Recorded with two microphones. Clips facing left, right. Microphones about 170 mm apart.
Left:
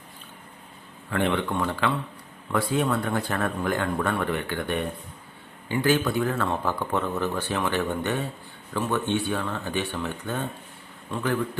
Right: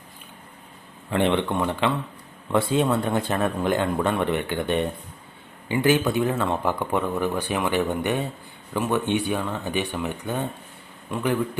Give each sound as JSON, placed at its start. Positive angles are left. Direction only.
{"t": 1.1, "sound": "speech", "side_deg": -20}